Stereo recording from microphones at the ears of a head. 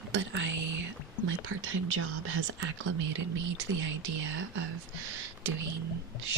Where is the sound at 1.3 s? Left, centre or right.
Right.